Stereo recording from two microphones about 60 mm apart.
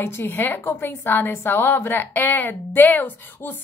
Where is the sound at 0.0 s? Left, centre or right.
Left.